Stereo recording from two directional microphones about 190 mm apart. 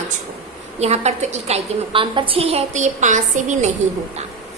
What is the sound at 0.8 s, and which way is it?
A woman's voice, 35° right (ahead or behind).